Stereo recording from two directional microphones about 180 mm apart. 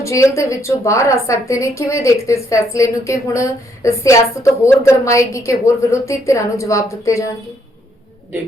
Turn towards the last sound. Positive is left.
turn(degrees=15)  # may be behind; listen again after turning